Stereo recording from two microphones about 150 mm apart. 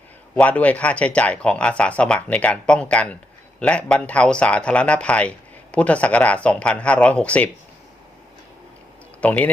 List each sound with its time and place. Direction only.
0.3 s speech: 10° left (ahead or behind)
9.2 s speech: 10° left (ahead or behind)